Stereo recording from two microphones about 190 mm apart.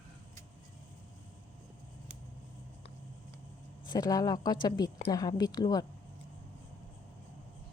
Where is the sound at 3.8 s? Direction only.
20° left (ahead or behind).